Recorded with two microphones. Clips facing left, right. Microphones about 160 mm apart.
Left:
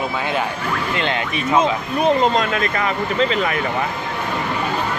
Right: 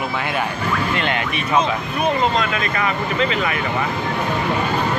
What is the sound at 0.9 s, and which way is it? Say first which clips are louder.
Speech: even; 25° left (ahead or behind).